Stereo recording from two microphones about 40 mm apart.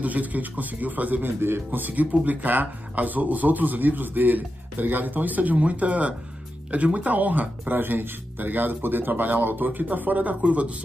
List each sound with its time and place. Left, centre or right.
0.0 s speech: right
1.2 s speech: right
1.7 s speech: right